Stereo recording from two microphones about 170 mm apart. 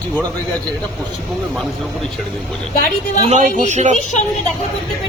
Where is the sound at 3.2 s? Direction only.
45° right (ahead or behind).